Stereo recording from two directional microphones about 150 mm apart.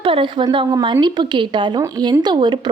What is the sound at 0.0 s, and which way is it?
A woman's voice, 35° right (ahead or behind).